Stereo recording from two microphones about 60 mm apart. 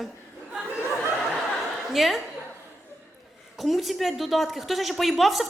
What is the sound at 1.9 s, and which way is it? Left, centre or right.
Speech, centre.